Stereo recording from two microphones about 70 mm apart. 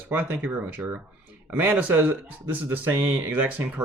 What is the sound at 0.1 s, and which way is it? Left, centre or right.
Speech, right.